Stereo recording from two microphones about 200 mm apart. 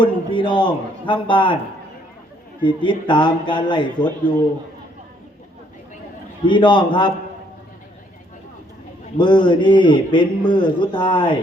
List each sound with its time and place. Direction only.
0.0 s a man's voice: 25° left (ahead or behind)
2.6 s a man's voice: 25° left (ahead or behind)
6.4 s a man's voice: 25° left (ahead or behind)
9.1 s a man's voice: 25° left (ahead or behind)